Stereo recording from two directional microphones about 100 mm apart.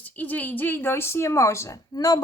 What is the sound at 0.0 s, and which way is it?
A woman's voice, 15° left (ahead or behind).